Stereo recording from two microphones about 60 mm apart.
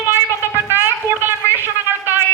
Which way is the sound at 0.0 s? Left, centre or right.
Right.